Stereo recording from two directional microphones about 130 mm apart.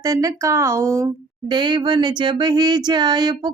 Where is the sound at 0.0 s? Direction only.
25° right (ahead or behind).